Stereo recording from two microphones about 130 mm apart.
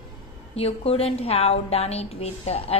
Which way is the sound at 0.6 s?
50° left (ahead or behind).